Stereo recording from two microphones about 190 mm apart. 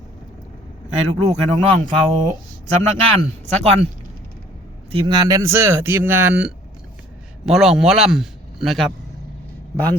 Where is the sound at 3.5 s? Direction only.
35° right (ahead or behind).